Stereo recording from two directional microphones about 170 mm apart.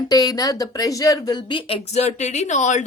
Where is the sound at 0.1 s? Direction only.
20° left (ahead or behind).